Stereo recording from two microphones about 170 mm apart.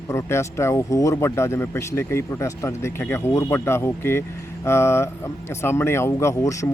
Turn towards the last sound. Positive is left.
turn(degrees=20)  # may be behind; listen again after turning